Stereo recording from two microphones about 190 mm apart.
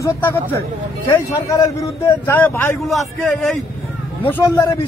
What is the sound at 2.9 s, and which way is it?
Speech, centre (ahead or behind).